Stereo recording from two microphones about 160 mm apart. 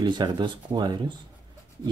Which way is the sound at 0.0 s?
30° right (ahead or behind).